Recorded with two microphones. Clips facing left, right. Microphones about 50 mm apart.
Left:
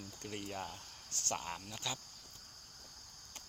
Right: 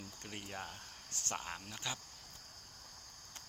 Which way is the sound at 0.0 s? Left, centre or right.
Centre.